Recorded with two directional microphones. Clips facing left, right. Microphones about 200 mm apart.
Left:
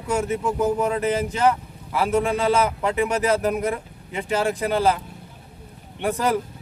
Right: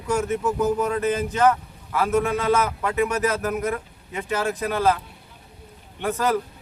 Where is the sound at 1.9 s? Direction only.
25° left (ahead or behind).